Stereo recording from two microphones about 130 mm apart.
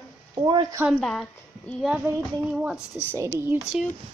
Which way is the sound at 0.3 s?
35° right (ahead or behind).